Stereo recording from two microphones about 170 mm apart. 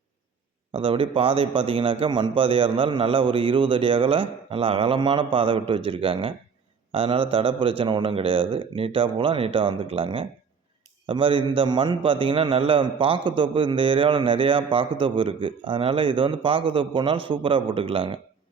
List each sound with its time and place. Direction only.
0.7 s a man's voice: 30° right (ahead or behind)